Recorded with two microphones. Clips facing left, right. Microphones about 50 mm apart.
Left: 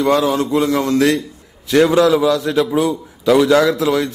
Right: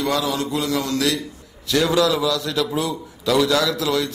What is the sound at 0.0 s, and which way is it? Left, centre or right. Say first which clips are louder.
A man's voice: left 7 dB; left.